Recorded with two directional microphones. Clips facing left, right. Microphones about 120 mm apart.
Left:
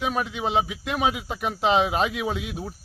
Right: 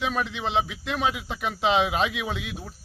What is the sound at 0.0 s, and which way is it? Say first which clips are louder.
Speech: left 1 dB; 5° left (ahead or behind).